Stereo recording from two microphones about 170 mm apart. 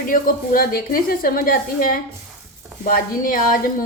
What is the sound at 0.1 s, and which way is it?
A woman's voice, 55° left (ahead or behind).